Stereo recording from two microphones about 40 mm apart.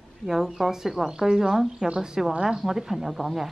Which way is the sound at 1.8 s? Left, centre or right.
Right.